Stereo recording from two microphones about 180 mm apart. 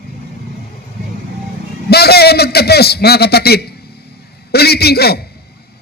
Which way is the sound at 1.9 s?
60° left (ahead or behind).